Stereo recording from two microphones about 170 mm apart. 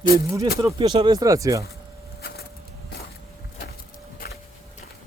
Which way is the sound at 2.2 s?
65° left (ahead or behind).